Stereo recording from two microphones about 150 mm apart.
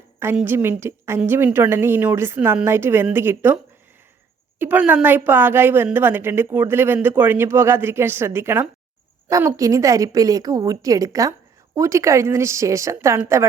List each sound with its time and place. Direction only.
0.3 s a woman's voice: 15° right (ahead or behind)
4.6 s a woman's voice: 10° right (ahead or behind)